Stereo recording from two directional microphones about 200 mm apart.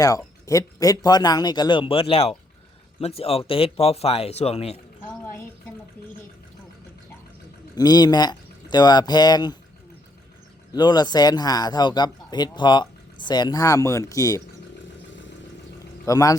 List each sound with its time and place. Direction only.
0.4 s speech: 15° left (ahead or behind)
5.2 s speech: 15° left (ahead or behind)
7.8 s speech: 20° left (ahead or behind)
10.7 s speech: 20° left (ahead or behind)
16.0 s a man's voice: 15° left (ahead or behind)